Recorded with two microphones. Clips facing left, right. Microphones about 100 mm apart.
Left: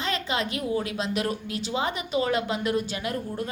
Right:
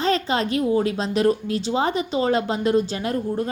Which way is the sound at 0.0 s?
35° right (ahead or behind).